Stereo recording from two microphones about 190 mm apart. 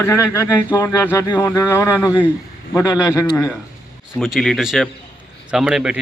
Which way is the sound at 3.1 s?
15° left (ahead or behind).